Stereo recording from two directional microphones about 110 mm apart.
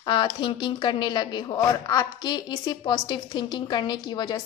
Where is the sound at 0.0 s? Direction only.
45° left (ahead or behind).